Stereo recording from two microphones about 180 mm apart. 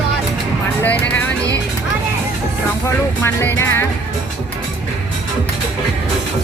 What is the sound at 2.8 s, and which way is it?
Speech, 15° left (ahead or behind).